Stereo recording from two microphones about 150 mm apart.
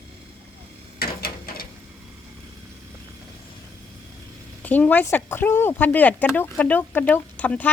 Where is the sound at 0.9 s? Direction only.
90° left.